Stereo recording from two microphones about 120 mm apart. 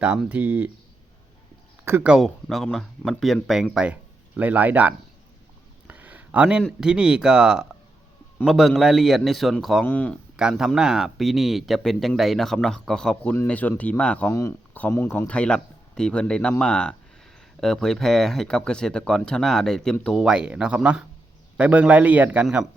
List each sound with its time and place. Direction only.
0.0 s speech: 10° right (ahead or behind)
1.8 s speech: 20° right (ahead or behind)
2.0 s speech: 5° right (ahead or behind)
5.9 s a sound: 15° right (ahead or behind)
6.7 s speech: 5° right (ahead or behind)
9.8 s speech: 10° left (ahead or behind)
10.3 s speech: 5° right (ahead or behind)
13.3 s speech: 15° left (ahead or behind)
14.3 s speech: 25° left (ahead or behind)
14.7 s speech: 15° left (ahead or behind)
15.3 s speech: 10° left (ahead or behind); by 22.4 s 15° right (ahead or behind)